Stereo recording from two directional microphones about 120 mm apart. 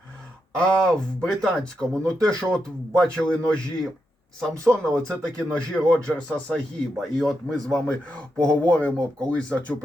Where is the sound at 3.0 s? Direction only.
5° left (ahead or behind).